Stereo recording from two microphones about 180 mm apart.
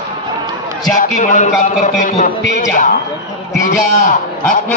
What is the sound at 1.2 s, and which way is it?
A man's voice, 45° left (ahead or behind).